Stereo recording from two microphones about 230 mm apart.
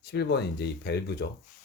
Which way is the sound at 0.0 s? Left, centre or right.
Left.